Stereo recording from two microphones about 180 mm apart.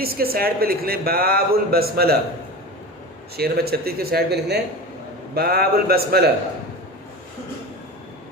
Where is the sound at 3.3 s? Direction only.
60° right (ahead or behind).